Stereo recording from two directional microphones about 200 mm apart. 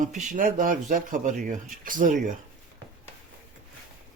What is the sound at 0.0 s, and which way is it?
Speech, 40° right (ahead or behind).